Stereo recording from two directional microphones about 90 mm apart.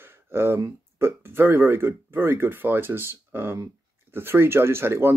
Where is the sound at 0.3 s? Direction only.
25° right (ahead or behind).